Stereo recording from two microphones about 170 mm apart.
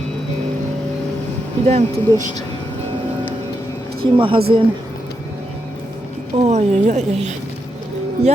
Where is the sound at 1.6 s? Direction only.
45° right (ahead or behind).